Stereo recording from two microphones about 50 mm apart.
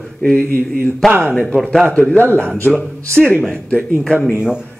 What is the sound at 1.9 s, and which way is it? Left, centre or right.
Speech, left.